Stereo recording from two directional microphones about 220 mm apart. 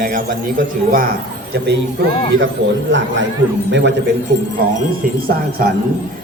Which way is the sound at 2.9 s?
55° right (ahead or behind).